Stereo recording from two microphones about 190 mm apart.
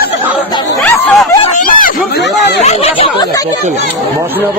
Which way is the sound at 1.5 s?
45° left (ahead or behind).